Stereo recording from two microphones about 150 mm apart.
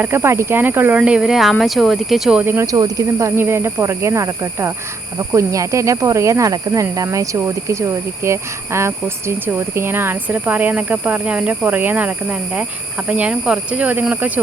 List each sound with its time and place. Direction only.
0.0 s speech: 15° right (ahead or behind)
2.4 s speech: 15° right (ahead or behind)